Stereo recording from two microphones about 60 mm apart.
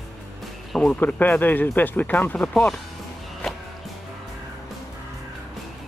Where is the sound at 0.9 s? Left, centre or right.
Left.